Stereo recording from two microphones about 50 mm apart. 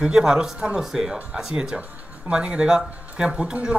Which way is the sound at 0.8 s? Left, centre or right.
Centre.